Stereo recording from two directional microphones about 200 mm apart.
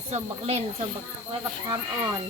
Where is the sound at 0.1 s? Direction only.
30° right (ahead or behind).